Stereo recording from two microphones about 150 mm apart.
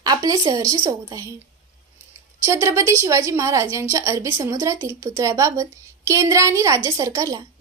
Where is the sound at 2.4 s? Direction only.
20° right (ahead or behind).